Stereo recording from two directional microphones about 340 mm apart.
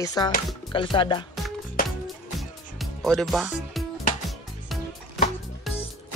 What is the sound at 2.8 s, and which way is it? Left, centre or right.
Speech, centre.